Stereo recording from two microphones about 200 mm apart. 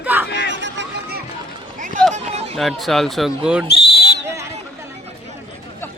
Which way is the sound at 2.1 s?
30° right (ahead or behind).